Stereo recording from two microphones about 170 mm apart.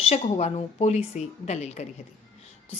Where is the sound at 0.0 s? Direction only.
40° left (ahead or behind).